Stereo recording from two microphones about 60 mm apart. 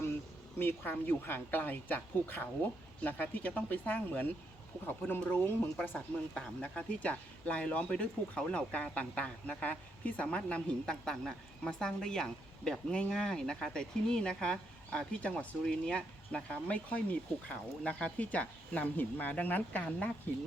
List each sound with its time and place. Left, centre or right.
0.6 s speech: left
6.3 s speech: centre